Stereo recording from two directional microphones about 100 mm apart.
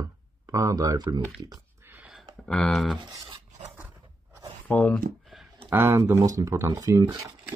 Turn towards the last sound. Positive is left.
turn(degrees=-40)  # may be behind; listen again after turning